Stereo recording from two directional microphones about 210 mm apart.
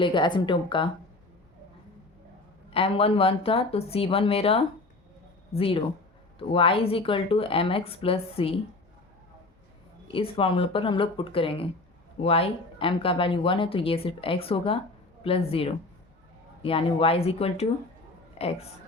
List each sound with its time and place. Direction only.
0.0 s speech: 20° left (ahead or behind)
2.6 s speech: 25° left (ahead or behind)
10.1 s speech: 25° left (ahead or behind)